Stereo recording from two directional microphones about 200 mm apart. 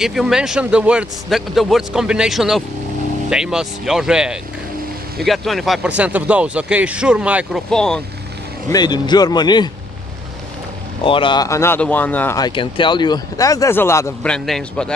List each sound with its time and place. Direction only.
0.0 s a man's voice: centre (ahead or behind)
8.6 s speech: 20° left (ahead or behind)
11.1 s speech: 25° left (ahead or behind); by 12.4 s 10° left (ahead or behind)
12.4 s speech: 20° left (ahead or behind); by 14.9 s 5° left (ahead or behind)